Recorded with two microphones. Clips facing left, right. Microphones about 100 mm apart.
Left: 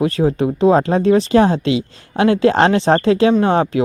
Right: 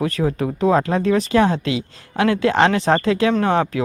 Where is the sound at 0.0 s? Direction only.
25° left (ahead or behind).